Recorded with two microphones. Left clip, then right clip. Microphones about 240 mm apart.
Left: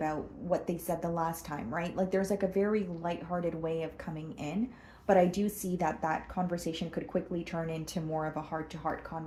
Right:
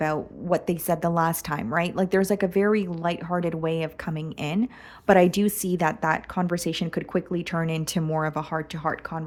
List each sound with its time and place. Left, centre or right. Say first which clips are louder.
0.0 s a woman's voice: right 8 dB; right